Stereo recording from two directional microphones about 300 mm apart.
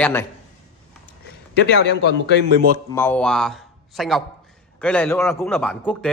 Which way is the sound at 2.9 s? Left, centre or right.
Centre.